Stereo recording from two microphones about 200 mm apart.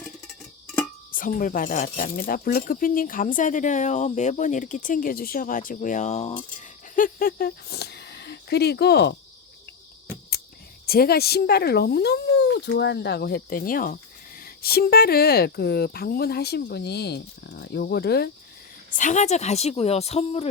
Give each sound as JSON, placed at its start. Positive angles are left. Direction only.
{"t": 1.1, "sound": "speech", "side_deg": 45}
{"t": 6.9, "sound": "speech", "side_deg": 45}
{"t": 10.8, "sound": "speech", "side_deg": 50}
{"t": 18.9, "sound": "speech", "side_deg": 35}